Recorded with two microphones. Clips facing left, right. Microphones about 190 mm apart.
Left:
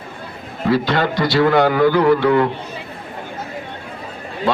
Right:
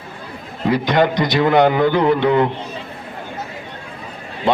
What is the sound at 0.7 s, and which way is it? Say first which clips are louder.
A man's voice: right 1 dB; 20° right (ahead or behind).